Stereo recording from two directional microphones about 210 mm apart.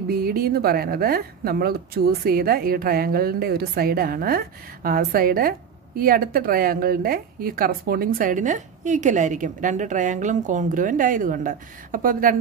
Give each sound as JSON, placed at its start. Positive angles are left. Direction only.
{"t": 0.1, "sound": "speech", "side_deg": -45}